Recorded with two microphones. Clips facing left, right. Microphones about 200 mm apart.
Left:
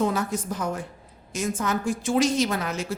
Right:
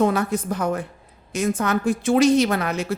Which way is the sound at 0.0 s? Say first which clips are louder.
Right 5 dB; 60° right (ahead or behind).